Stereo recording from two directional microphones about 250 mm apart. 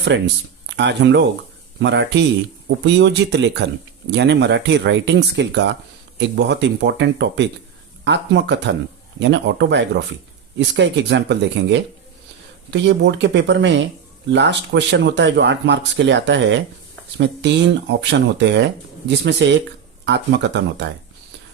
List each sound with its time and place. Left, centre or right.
0.1 s speech: right